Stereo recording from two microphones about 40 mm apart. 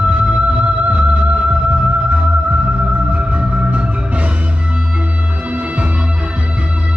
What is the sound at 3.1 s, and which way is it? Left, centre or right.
Music, right.